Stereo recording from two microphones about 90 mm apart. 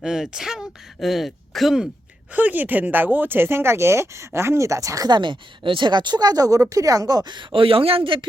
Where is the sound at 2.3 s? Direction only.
20° right (ahead or behind); by 5.1 s 40° right (ahead or behind).